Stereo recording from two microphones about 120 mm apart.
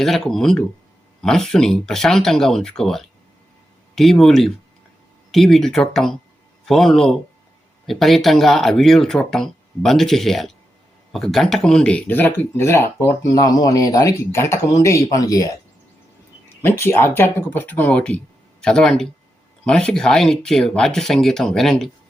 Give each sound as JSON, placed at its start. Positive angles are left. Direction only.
{"t": 0.0, "sound": "speech", "side_deg": 5}
{"t": 13.2, "sound": "speech", "side_deg": 30}
{"t": 16.6, "sound": "speech", "side_deg": 20}